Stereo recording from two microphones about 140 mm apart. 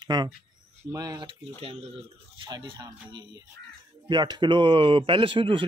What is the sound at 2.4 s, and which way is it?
Speech, 30° right (ahead or behind).